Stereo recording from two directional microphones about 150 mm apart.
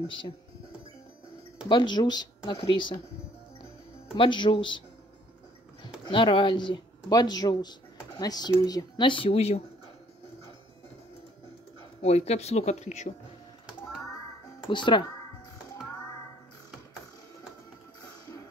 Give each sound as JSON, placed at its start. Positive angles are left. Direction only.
{"t": 1.7, "sound": "speech", "side_deg": 30}
{"t": 4.1, "sound": "speech", "side_deg": 35}
{"t": 6.0, "sound": "speech", "side_deg": 35}
{"t": 12.0, "sound": "speech", "side_deg": 45}
{"t": 14.7, "sound": "speech", "side_deg": 30}